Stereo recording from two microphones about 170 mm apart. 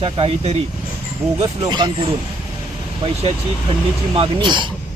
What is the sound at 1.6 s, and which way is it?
Speech, 25° right (ahead or behind).